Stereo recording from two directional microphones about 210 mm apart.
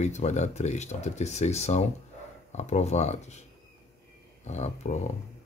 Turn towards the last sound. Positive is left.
turn(degrees=35)  # may be behind; listen again after turning